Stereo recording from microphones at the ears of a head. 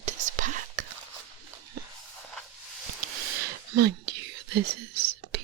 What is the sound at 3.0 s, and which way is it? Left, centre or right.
Whispering, right.